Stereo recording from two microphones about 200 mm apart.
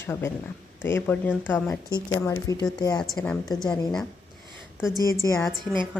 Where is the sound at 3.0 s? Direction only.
5° left (ahead or behind).